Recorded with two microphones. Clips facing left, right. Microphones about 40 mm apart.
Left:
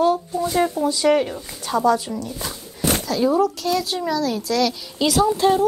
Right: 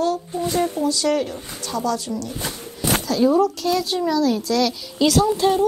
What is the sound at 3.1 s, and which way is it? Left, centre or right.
A child's voice, centre.